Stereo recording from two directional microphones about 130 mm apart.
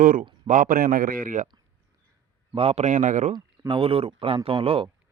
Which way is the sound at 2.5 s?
55° right (ahead or behind).